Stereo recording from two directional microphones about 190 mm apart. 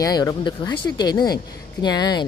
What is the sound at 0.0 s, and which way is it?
Speech, 20° left (ahead or behind).